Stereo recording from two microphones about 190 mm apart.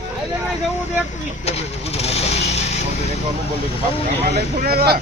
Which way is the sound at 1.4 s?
35° left (ahead or behind).